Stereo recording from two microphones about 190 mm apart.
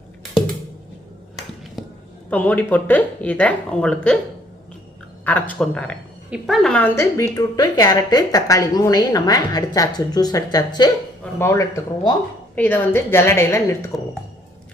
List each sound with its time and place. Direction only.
2.3 s speech: 10° left (ahead or behind)
5.2 s a woman's voice: 10° left (ahead or behind)